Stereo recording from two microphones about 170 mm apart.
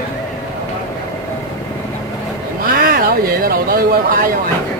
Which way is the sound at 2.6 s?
60° right (ahead or behind).